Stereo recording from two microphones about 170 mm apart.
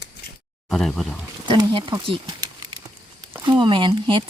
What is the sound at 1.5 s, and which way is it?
Speech, 25° right (ahead or behind).